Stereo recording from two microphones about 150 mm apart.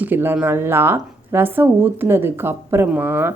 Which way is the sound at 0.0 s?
15° right (ahead or behind).